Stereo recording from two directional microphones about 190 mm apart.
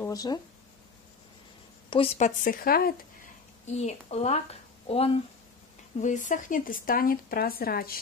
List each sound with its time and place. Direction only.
0.0 s speech: 20° left (ahead or behind)
1.9 s speech: 30° left (ahead or behind); by 2.9 s 50° left (ahead or behind)
3.6 s a woman's voice: 35° left (ahead or behind); by 8.0 s 50° left (ahead or behind)